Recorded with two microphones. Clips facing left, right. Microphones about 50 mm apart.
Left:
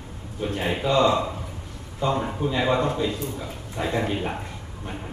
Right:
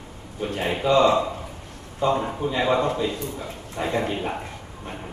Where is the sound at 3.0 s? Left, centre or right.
Right.